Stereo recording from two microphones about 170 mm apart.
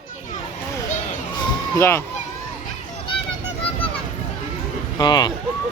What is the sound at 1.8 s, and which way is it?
Speech, 15° left (ahead or behind).